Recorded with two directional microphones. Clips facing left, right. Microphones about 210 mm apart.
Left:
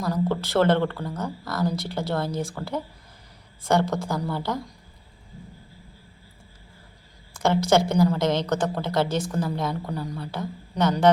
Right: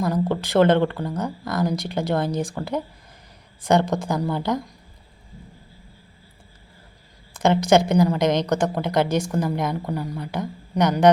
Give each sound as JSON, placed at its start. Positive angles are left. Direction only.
{"t": 0.0, "sound": "a woman's voice", "side_deg": -15}
{"t": 7.3, "sound": "a woman's voice", "side_deg": -20}